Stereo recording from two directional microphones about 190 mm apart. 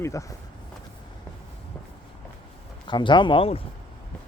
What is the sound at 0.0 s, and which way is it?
Speech, 15° left (ahead or behind).